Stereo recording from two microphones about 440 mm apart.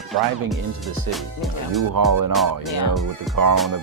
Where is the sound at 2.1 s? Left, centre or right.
Right.